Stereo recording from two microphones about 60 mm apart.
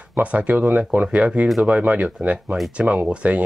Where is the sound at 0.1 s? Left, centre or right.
Right.